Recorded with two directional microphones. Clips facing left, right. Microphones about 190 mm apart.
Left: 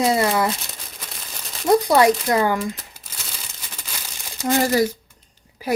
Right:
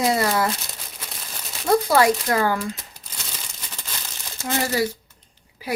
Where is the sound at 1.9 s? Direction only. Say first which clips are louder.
Left 2 dB; 20° left (ahead or behind).